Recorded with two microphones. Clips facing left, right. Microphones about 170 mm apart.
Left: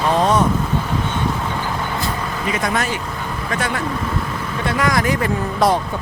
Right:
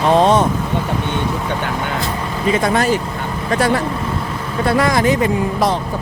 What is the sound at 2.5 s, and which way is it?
Speech, 30° right (ahead or behind).